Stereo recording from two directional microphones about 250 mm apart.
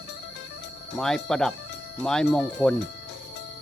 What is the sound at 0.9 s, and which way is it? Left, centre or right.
Speech, centre.